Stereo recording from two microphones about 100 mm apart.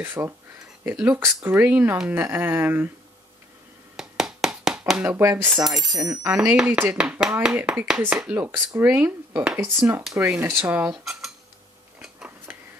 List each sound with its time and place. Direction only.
0.0 s speech: 25° right (ahead or behind)
0.8 s cutlery: 15° right (ahead or behind)
1.2 s speech: 20° right (ahead or behind)
3.9 s a sound: 5° right (ahead or behind)
5.0 s speech: 30° right (ahead or behind)
5.7 s speech: centre (ahead or behind)
6.2 s cutlery: 10° right (ahead or behind)
8.3 s speech: 20° right (ahead or behind)
10.3 s cutlery: 20° right (ahead or behind)
12.0 s a sound: 10° right (ahead or behind)